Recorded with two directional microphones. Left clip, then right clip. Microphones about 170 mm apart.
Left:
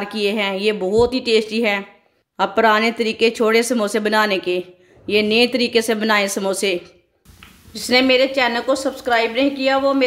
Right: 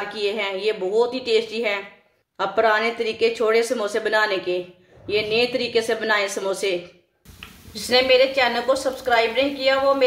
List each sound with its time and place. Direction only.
0.1 s speech: 60° left (ahead or behind)